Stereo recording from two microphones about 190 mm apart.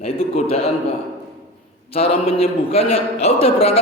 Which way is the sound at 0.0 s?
30° left (ahead or behind).